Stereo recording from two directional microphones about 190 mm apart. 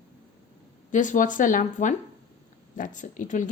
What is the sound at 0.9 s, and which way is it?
A woman's voice, 40° left (ahead or behind).